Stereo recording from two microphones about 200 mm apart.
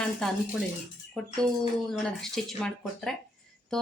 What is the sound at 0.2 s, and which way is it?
Speech, 5° left (ahead or behind).